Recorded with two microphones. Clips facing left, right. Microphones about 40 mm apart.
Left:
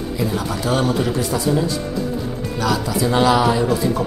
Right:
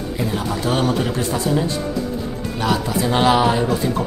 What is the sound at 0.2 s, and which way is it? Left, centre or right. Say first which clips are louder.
Speech: left 1 dB; right.